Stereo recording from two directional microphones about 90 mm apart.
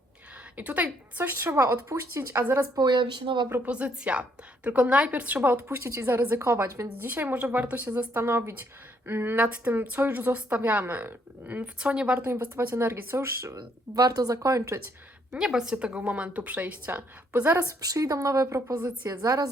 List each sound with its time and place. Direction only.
0.5 s a woman's voice: 15° right (ahead or behind)
2.7 s speech: 60° right (ahead or behind)
3.5 s a woman's voice: 15° right (ahead or behind)
5.6 s a woman's voice: 30° right (ahead or behind)
7.0 s a woman's voice: 20° right (ahead or behind)
12.3 s a woman's voice: 25° right (ahead or behind)
13.6 s speech: 45° right (ahead or behind)
15.3 s a woman's voice: 10° right (ahead or behind)
17.6 s speech: 40° right (ahead or behind)